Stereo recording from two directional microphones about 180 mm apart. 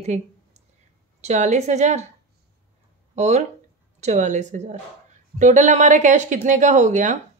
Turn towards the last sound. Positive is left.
turn(degrees=-45)  # may be behind; listen again after turning